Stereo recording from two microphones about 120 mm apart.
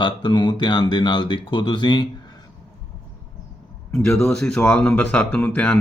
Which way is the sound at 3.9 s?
5° left (ahead or behind).